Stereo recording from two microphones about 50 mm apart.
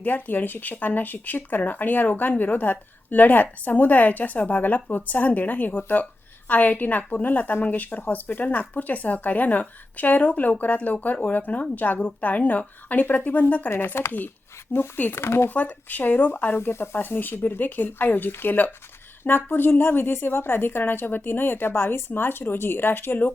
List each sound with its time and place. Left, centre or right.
0.0 s a woman's voice: left
13.7 s a woman's voice: left
15.1 s speech: left
15.4 s a woman's voice: left